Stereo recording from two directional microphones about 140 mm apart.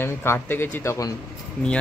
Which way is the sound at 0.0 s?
15° left (ahead or behind).